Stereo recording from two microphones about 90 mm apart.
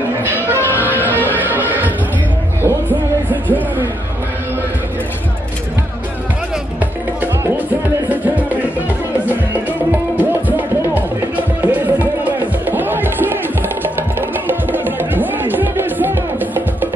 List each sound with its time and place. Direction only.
0.2 s music: 20° right (ahead or behind)
9.8 s music: 20° right (ahead or behind)